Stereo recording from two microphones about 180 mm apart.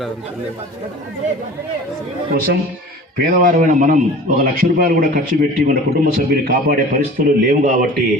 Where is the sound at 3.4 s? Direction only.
45° right (ahead or behind).